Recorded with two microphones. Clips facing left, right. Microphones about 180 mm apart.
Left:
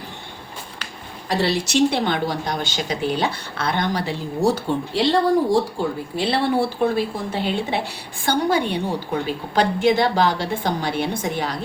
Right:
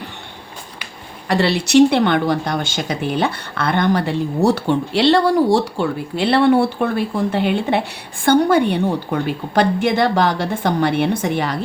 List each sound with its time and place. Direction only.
1.3 s a woman's voice: 70° right (ahead or behind)